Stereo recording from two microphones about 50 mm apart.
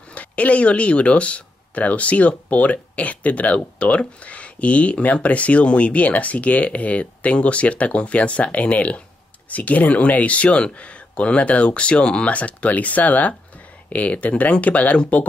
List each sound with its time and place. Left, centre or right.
0.1 s speech: left